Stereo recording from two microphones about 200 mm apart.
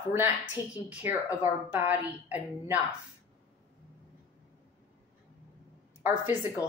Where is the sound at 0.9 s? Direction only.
10° right (ahead or behind).